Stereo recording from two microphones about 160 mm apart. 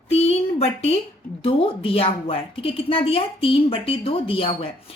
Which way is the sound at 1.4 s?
35° left (ahead or behind).